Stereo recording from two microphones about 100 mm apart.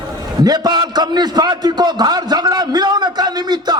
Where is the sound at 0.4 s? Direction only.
45° right (ahead or behind).